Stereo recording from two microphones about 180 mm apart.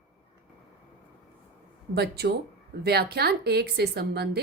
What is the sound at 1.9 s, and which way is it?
A woman's voice, 65° right (ahead or behind).